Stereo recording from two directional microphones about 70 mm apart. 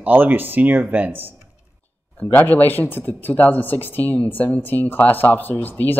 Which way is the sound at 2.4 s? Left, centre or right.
Left.